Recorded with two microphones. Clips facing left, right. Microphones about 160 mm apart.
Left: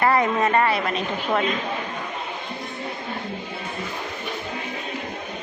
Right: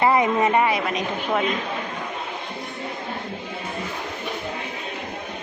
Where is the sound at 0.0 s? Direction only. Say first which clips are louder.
Right 1 dB; 15° right (ahead or behind).